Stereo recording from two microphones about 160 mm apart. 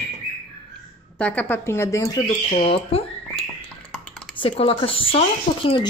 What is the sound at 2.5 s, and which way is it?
Speech, 35° left (ahead or behind).